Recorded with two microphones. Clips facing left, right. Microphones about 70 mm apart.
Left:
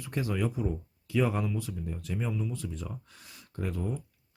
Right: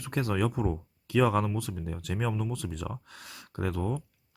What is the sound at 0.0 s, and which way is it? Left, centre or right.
Speech, right.